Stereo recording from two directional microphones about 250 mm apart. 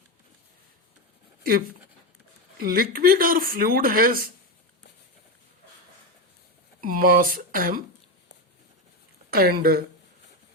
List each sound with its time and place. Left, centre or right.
2.6 s speech: right
6.8 s speech: right
9.3 s speech: right